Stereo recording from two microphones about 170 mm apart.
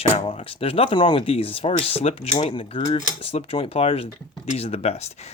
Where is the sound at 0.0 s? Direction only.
35° left (ahead or behind).